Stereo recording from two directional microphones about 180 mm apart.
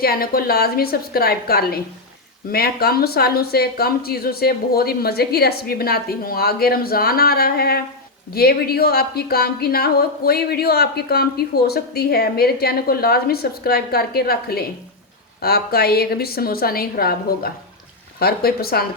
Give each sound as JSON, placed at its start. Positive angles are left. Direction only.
{"t": 0.0, "sound": "a woman's voice", "side_deg": 55}